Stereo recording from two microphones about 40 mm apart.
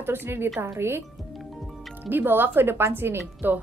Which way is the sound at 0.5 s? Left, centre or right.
Right.